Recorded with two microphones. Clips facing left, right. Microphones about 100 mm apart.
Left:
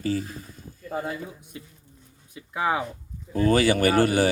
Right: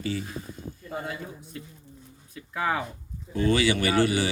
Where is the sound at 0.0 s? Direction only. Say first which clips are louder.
Left 4 dB; 40° left (ahead or behind).